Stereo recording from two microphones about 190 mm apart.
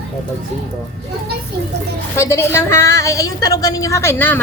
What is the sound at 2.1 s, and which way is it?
A woman's voice, 15° left (ahead or behind).